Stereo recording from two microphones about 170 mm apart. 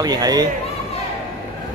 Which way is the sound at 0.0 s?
20° right (ahead or behind).